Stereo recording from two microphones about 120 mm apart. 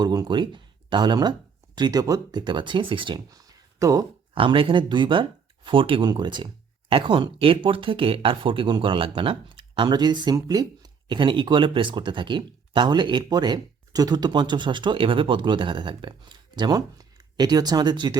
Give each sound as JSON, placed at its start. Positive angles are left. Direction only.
{"t": 0.0, "sound": "speech", "side_deg": -35}
{"t": 3.2, "sound": "a sound", "side_deg": -30}
{"t": 4.4, "sound": "speech", "side_deg": -50}